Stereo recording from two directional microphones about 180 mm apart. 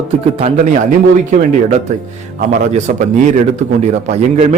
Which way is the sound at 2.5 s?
40° right (ahead or behind).